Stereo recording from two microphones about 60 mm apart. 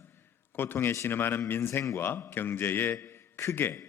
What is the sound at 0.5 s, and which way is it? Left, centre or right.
A man's voice, left.